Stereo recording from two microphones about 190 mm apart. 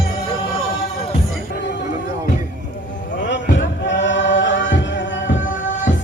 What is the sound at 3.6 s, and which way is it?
Music, 70° left (ahead or behind).